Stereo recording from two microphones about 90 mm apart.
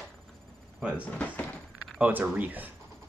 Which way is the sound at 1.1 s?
15° left (ahead or behind).